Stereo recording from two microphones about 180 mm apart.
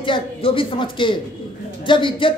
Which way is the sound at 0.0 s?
30° left (ahead or behind).